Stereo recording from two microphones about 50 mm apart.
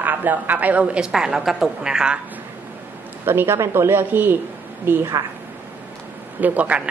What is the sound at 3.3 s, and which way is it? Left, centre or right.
Speech, right.